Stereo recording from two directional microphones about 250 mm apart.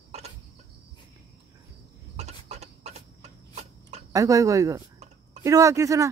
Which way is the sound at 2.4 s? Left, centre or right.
Right.